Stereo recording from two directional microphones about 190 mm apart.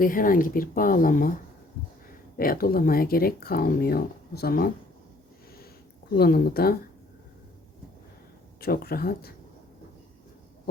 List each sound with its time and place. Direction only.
0.0 s speech: 45° left (ahead or behind)
2.4 s speech: 50° left (ahead or behind)
6.1 s speech: 55° left (ahead or behind)
8.6 s speech: 55° left (ahead or behind)